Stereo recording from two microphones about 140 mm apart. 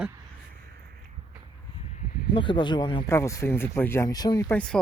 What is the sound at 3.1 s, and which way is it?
Speech, 20° left (ahead or behind).